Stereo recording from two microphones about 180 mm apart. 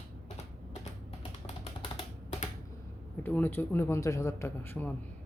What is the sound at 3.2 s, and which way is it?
Speech, 10° left (ahead or behind).